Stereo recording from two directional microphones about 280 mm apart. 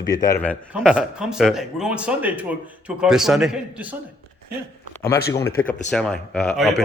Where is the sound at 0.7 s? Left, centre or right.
Centre.